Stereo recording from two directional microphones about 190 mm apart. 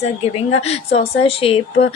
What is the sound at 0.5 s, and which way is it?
A woman's voice, 35° left (ahead or behind).